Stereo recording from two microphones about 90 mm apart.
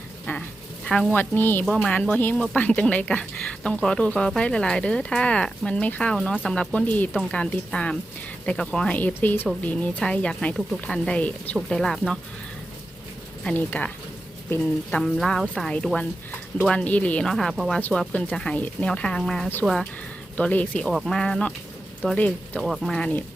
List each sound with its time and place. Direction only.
0.3 s a sound: 20° left (ahead or behind)
1.1 s a woman's voice: 20° left (ahead or behind)
9.0 s a woman's voice: 20° left (ahead or behind)
13.4 s speech: 15° left (ahead or behind)
17.2 s speech: 5° left (ahead or behind)
18.1 s speech: 15° left (ahead or behind)
20.3 s speech: 20° left (ahead or behind)
20.8 s speech: 5° left (ahead or behind)
22.6 s speech: centre (ahead or behind)